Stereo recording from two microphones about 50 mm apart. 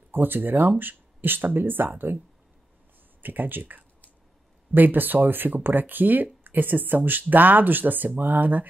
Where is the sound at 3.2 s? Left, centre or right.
Right.